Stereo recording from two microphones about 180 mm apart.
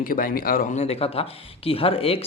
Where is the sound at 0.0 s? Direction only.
50° left (ahead or behind).